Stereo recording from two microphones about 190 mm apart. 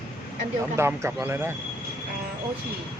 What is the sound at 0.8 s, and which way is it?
Speech, 10° right (ahead or behind).